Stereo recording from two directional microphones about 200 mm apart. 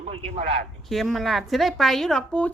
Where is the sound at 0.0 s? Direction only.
30° right (ahead or behind).